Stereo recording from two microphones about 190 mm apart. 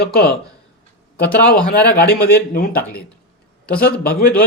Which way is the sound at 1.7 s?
50° left (ahead or behind).